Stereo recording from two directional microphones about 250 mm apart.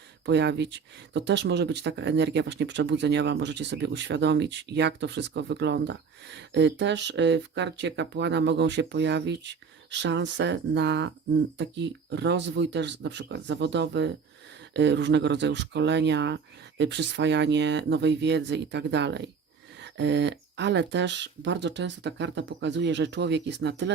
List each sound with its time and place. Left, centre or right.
0.3 s speech: right